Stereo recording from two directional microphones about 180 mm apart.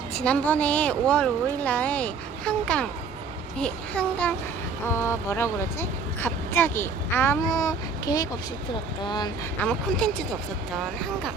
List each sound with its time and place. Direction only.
0.1 s speech: 5° left (ahead or behind); by 9.3 s 25° left (ahead or behind)
9.6 s speech: 5° left (ahead or behind)